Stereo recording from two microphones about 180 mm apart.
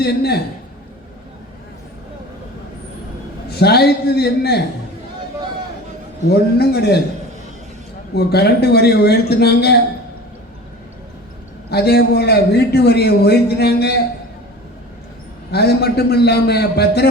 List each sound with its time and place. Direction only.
0.0 s a man's voice: 65° left (ahead or behind)
3.5 s a man's voice: 65° left (ahead or behind)
6.2 s a man's voice: 65° left (ahead or behind)
8.1 s a man's voice: 65° left (ahead or behind)
11.7 s a man's voice: 65° left (ahead or behind)
15.5 s a man's voice: 65° left (ahead or behind)